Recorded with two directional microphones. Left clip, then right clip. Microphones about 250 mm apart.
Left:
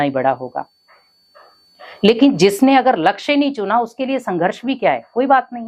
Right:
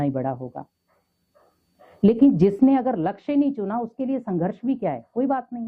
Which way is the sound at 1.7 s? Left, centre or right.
Centre.